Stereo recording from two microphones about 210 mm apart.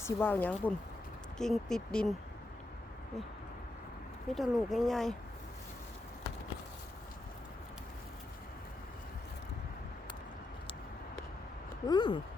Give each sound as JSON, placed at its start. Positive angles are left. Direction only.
{"t": 0.0, "sound": "speech", "side_deg": 10}
{"t": 4.4, "sound": "speech", "side_deg": 0}
{"t": 11.9, "sound": "speech", "side_deg": 20}